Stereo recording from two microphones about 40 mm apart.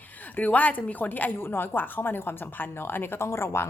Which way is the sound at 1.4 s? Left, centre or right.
Left.